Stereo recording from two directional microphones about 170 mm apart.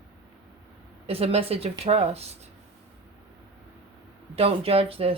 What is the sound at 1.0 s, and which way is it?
Speech, 35° right (ahead or behind).